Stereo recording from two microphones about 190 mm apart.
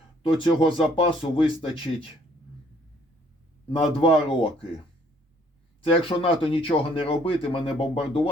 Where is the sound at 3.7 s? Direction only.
30° left (ahead or behind).